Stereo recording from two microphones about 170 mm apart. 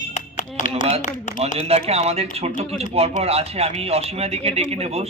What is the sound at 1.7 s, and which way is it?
A man's voice, 35° right (ahead or behind).